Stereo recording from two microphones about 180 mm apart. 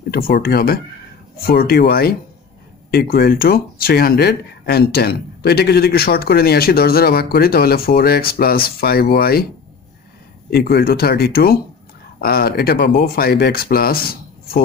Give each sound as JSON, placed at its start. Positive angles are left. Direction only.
{"t": 0.1, "sound": "speech", "side_deg": 60}
{"t": 10.5, "sound": "speech", "side_deg": 60}